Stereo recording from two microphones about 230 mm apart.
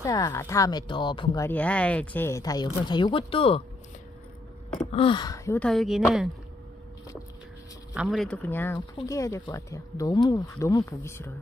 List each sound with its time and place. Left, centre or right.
0.0 s speech: centre
4.9 s speech: left; by 6.2 s centre
7.9 s speech: centre